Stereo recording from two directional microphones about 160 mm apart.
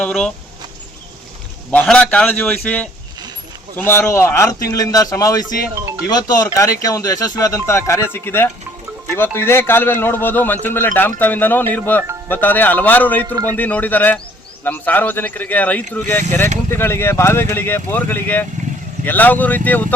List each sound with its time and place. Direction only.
0.0 s speech: 5° left (ahead or behind)
1.7 s a man's voice: 10° left (ahead or behind)
13.2 s a man's voice: 20° right (ahead or behind)
13.6 s a man's voice: 10° left (ahead or behind)